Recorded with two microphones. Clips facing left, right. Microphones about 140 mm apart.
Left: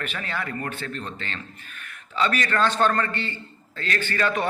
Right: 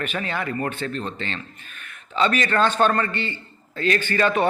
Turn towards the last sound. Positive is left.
turn(degrees=-20)  # may be behind; listen again after turning